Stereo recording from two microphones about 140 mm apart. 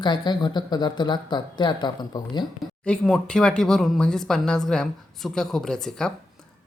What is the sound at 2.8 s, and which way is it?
Speech, 5° left (ahead or behind).